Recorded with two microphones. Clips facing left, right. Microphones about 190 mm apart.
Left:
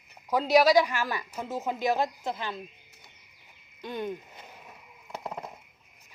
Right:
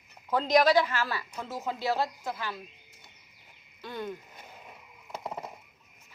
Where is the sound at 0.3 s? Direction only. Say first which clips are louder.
Left 2 dB; 10° left (ahead or behind).